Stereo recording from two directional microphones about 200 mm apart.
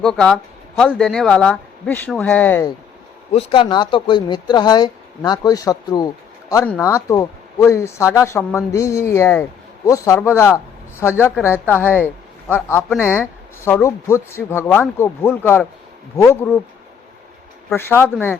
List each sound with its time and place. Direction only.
0.0 s speech: 5° left (ahead or behind)
3.3 s speech: 25° left (ahead or behind)
17.7 s speech: 10° left (ahead or behind)